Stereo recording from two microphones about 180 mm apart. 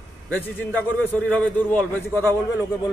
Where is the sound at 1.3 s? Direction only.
10° left (ahead or behind).